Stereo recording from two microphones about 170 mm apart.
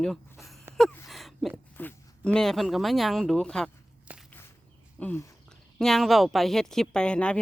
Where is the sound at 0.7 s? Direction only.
15° right (ahead or behind).